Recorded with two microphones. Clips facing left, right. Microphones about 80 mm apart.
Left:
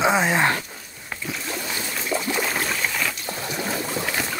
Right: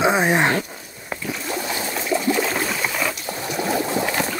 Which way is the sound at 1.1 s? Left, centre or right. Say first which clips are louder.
Right 4 dB; centre.